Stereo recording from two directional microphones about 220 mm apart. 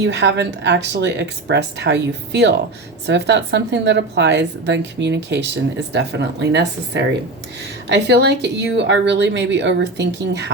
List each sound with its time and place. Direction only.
0.0 s a woman's voice: 55° right (ahead or behind)